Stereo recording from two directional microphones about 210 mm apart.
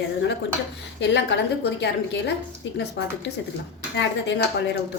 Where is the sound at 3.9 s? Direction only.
55° left (ahead or behind).